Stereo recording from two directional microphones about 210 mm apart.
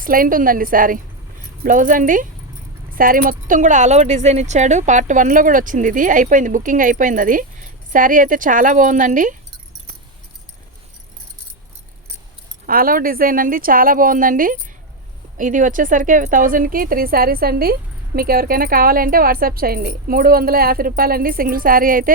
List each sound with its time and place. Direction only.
0.0 s speech: 40° right (ahead or behind)
12.6 s speech: 45° right (ahead or behind)